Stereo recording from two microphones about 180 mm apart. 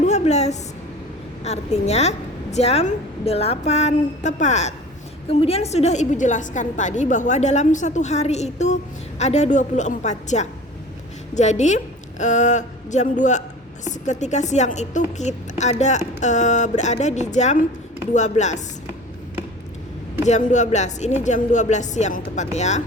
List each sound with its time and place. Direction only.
0.0 s a sound: 40° left (ahead or behind)
1.5 s a woman's voice: 35° left (ahead or behind)
20.2 s a woman's voice: 40° left (ahead or behind)